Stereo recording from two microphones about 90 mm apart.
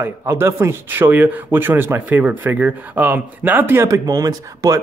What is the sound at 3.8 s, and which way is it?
Speech, 40° right (ahead or behind).